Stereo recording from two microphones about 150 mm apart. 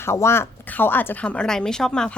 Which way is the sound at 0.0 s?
15° left (ahead or behind).